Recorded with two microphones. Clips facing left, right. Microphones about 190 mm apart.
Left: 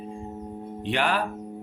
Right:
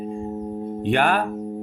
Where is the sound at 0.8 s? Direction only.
50° right (ahead or behind).